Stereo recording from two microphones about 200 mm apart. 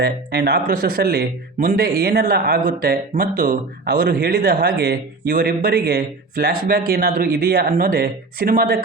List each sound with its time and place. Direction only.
0.0 s speech: 55° right (ahead or behind)